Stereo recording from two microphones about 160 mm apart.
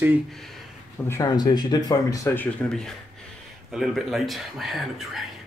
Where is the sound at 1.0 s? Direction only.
20° left (ahead or behind); by 5.2 s centre (ahead or behind).